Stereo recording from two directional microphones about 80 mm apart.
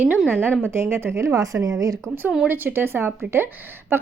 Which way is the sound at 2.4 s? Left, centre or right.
Right.